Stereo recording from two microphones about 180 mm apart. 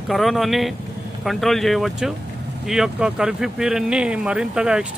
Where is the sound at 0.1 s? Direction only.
Centre (ahead or behind).